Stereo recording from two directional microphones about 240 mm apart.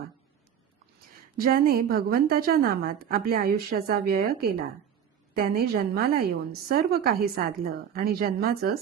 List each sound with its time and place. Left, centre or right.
1.4 s a woman's voice: right